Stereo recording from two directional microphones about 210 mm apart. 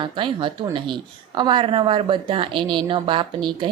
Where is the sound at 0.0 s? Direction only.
25° right (ahead or behind).